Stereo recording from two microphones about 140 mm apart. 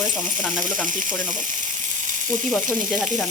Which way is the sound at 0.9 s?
70° right (ahead or behind).